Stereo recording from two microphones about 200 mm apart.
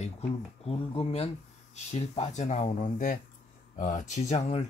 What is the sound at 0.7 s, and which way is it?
Speech, 30° left (ahead or behind).